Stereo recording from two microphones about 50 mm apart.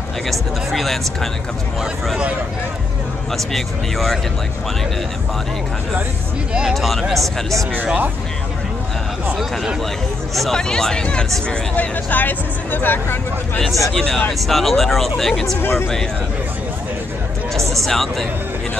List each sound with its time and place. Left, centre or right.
0.3 s speech: centre
3.3 s speech: centre
6.7 s speech: centre
10.3 s speech: centre
10.6 s speech: centre
11.7 s speech: left
13.6 s speech: centre
15.6 s speech: left
17.7 s speech: centre